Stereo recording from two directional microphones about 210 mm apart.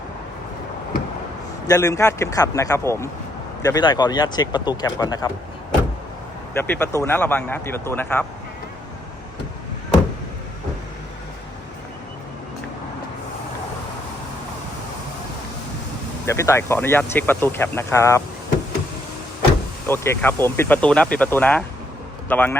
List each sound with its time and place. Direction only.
1.6 s speech: 15° left (ahead or behind)
6.5 s speech: 10° left (ahead or behind)
16.2 s speech: 15° left (ahead or behind)
19.9 s speech: 10° left (ahead or behind)